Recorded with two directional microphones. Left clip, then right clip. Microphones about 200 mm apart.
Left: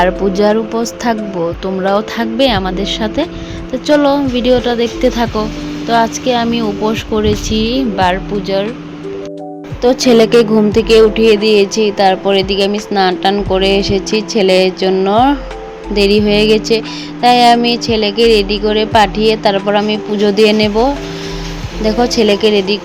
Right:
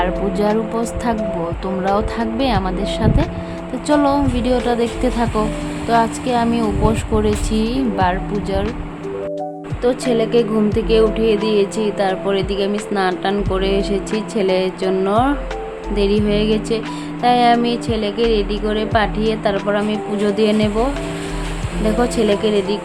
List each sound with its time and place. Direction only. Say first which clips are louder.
0.0 s music: left 7 dB; 25° left (ahead or behind)
1.9 s speech: left 3 dB; 15° left (ahead or behind)
9.8 s music: left 6 dB; 25° left (ahead or behind)
10.1 s music: left 10 dB; 35° left (ahead or behind)
21.8 s speech: left 5 dB; 20° left (ahead or behind)
22.2 s music: left 7 dB; 20° left (ahead or behind)